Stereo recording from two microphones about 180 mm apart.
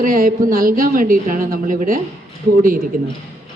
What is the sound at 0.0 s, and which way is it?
Speech, 50° right (ahead or behind).